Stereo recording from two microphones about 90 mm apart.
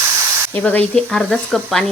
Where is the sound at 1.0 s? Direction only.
5° left (ahead or behind).